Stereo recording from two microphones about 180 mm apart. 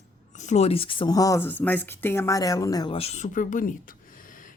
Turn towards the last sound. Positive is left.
turn(degrees=50)  # may be behind; listen again after turning